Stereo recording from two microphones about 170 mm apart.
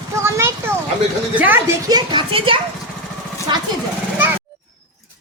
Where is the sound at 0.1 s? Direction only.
15° right (ahead or behind).